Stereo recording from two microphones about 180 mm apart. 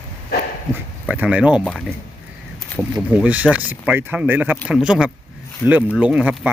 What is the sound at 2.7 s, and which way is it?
A man's voice, 5° right (ahead or behind).